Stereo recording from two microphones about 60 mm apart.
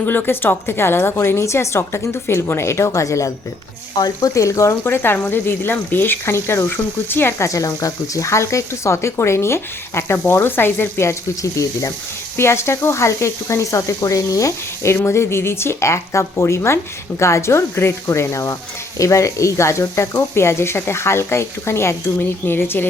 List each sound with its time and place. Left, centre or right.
0.0 s speech: left
7.4 s speech: left
12.4 s speech: left
14.8 s speech: left